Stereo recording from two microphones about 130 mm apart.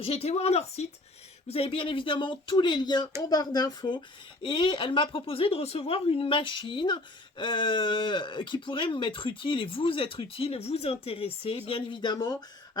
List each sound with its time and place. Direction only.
0.0 s speech: 50° left (ahead or behind); by 12.4 s 30° left (ahead or behind)